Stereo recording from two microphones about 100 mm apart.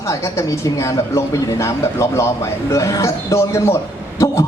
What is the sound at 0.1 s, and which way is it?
A woman's voice, 25° left (ahead or behind).